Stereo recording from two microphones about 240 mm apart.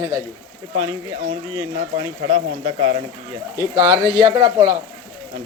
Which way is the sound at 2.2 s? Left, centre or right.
Right.